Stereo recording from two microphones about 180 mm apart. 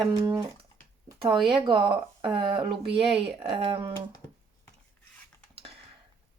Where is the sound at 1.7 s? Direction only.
25° right (ahead or behind).